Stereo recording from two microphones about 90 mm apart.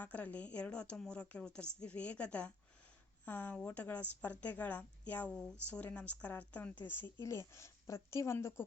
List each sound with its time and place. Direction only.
0.0 s a woman's voice: 15° left (ahead or behind)